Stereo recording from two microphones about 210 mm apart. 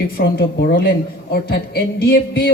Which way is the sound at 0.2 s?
45° left (ahead or behind).